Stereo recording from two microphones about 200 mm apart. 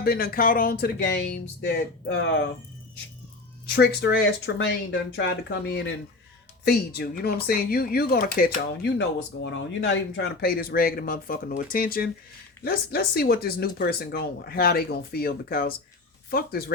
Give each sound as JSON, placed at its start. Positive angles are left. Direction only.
{"t": 0.0, "sound": "speech", "side_deg": 50}
{"t": 3.7, "sound": "speech", "side_deg": 55}
{"t": 6.7, "sound": "speech", "side_deg": 50}